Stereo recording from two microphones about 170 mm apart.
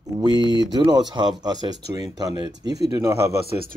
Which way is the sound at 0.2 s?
25° right (ahead or behind).